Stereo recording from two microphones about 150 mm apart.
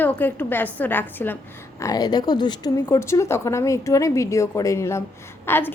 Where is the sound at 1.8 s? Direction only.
25° left (ahead or behind).